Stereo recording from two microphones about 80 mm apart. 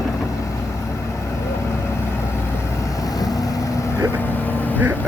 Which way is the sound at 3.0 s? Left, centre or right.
Left.